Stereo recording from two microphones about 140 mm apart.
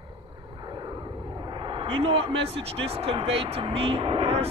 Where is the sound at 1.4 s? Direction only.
35° right (ahead or behind).